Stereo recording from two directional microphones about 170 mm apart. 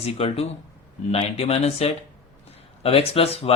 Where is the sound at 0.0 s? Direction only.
35° left (ahead or behind).